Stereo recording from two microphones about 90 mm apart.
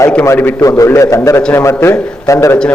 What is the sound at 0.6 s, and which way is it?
A man's voice, 35° left (ahead or behind).